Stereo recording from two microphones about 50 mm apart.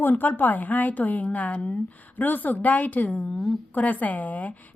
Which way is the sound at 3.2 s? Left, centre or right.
Centre.